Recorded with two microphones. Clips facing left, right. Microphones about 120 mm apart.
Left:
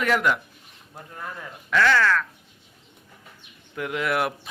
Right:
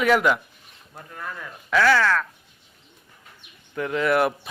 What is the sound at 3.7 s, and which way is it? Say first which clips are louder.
Speech: right 4 dB; 5° left (ahead or behind).